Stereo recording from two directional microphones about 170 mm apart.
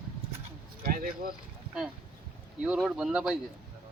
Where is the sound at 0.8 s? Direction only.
60° right (ahead or behind).